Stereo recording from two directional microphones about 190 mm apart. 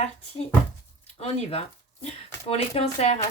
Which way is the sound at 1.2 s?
30° left (ahead or behind).